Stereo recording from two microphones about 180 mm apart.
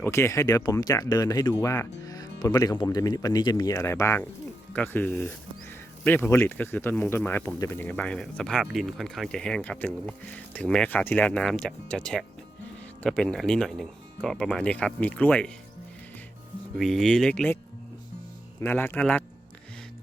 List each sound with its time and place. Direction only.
0.0 s speech: 15° left (ahead or behind)
16.7 s speech: centre (ahead or behind)
18.6 s speech: 10° left (ahead or behind)